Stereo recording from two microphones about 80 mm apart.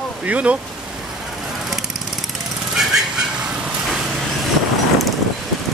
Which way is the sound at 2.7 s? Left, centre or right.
Centre.